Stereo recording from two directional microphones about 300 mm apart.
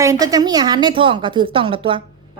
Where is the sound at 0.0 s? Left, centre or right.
Centre.